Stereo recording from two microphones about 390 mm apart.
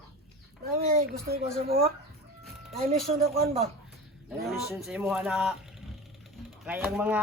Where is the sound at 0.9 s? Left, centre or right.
Right.